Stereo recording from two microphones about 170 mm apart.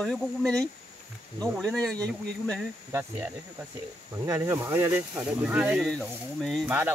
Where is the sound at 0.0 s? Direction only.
5° left (ahead or behind).